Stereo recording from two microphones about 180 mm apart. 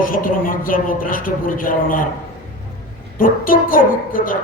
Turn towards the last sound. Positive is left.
turn(degrees=50)  # may be behind; listen again after turning